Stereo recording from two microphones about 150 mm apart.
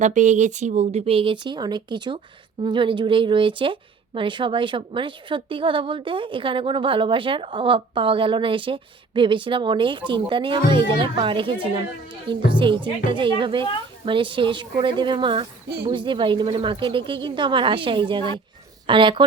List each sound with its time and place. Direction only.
0.0 s speech: 55° right (ahead or behind); by 19.2 s 35° right (ahead or behind)